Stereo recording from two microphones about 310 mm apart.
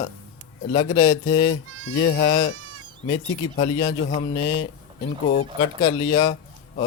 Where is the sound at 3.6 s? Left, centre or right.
Centre.